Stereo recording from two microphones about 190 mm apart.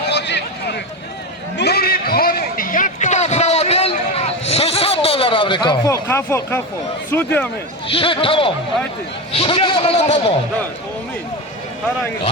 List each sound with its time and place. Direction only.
0.0 s a sound: 65° left (ahead or behind); by 6.6 s 15° left (ahead or behind)
7.1 s speech: 10° left (ahead or behind)
7.9 s a man's voice: 30° left (ahead or behind)